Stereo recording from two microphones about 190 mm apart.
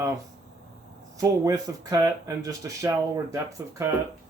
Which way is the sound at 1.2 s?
20° right (ahead or behind).